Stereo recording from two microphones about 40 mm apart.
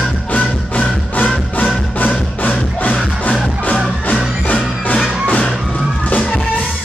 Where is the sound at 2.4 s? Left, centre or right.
Left.